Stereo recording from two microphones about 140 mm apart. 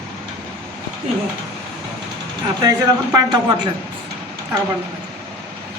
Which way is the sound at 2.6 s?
25° right (ahead or behind).